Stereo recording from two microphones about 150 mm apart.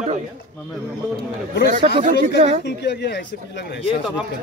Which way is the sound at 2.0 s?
50° right (ahead or behind).